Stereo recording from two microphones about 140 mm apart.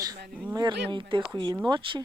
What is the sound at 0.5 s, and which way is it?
Speech, 35° right (ahead or behind).